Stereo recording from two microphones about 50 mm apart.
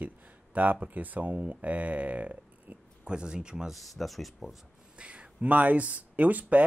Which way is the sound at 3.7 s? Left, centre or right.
Centre.